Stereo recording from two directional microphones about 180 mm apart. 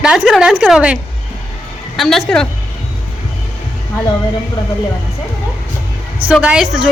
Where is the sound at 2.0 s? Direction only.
Centre (ahead or behind).